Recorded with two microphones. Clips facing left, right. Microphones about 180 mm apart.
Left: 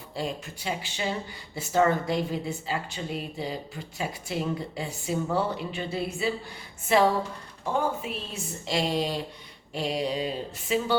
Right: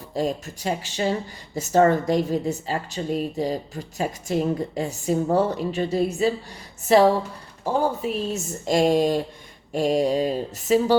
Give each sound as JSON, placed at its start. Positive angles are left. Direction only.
{"t": 0.1, "sound": "a woman's voice", "side_deg": -40}